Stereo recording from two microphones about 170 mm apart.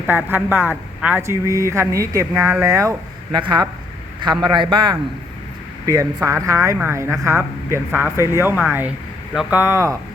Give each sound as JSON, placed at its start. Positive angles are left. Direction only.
{"t": 0.1, "sound": "speech", "side_deg": -10}